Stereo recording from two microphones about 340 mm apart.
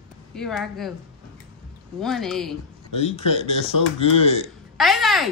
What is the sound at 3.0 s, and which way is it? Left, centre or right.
Speech, centre.